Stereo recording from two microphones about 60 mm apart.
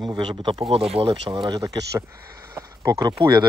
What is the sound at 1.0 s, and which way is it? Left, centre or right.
Speech, right.